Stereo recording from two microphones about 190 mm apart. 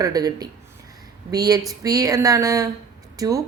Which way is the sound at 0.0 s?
20° right (ahead or behind).